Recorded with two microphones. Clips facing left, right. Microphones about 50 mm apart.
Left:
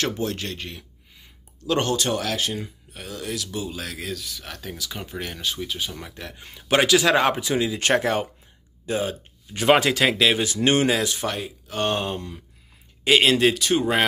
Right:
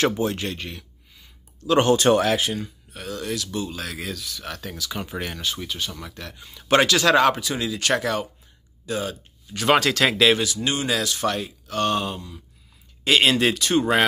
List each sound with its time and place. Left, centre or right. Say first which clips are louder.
0.0 s speech: right 4 dB; centre
0.6 s speech: right 1 dB; centre
2.0 s speech: right 7 dB; right
2.5 s speech: right 1 dB; centre
6.0 s speech: even; centre
6.7 s speech: right 1 dB; centre
10.4 s speech: left 5 dB; left
10.9 s speech: left 2 dB; left
11.2 s speech: right 3 dB; centre
11.8 s speech: right 1 dB; left
13.2 s speech: left 1 dB; centre